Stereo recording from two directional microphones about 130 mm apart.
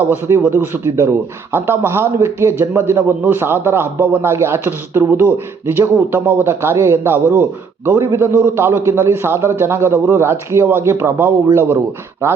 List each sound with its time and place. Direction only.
0.1 s a man's voice: 15° right (ahead or behind)